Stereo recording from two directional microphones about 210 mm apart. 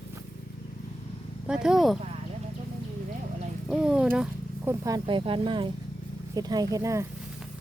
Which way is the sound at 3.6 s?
Centre (ahead or behind).